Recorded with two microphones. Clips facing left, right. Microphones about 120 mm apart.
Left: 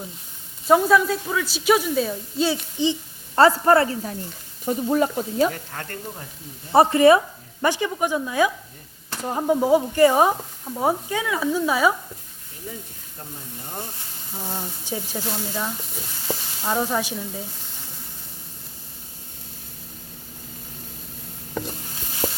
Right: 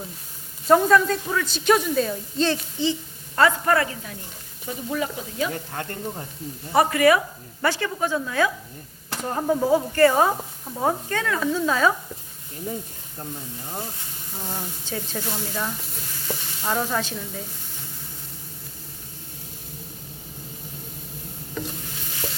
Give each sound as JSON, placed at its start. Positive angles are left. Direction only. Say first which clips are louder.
{"t": 0.7, "sound": "a woman's voice", "louder": "even", "side_deg": 5}
{"t": 3.3, "sound": "a woman's voice", "louder": "left 4 dB", "side_deg": 30}
{"t": 4.6, "sound": "speech", "louder": "left 7 dB", "side_deg": 40}
{"t": 5.7, "sound": "speech", "louder": "right 3 dB", "side_deg": -20}
{"t": 6.7, "sound": "speech", "louder": "left 4 dB", "side_deg": 25}
{"t": 7.6, "sound": "speech", "louder": "left 2 dB", "side_deg": 15}
{"t": 12.7, "sound": "speech", "louder": "right 5 dB", "side_deg": -45}
{"t": 14.3, "sound": "speech", "louder": "left 1 dB", "side_deg": 10}
{"t": 22.2, "sound": "stir", "louder": "left 6 dB", "side_deg": 40}